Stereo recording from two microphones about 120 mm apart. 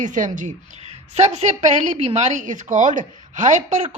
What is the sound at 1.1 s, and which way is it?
A woman's voice, 70° right (ahead or behind).